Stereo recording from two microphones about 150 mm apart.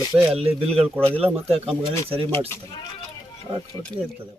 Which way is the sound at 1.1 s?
40° right (ahead or behind).